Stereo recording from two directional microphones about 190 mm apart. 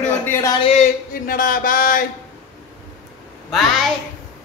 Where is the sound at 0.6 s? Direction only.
40° left (ahead or behind).